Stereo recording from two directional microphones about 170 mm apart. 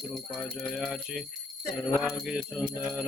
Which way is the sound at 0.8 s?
Centre (ahead or behind).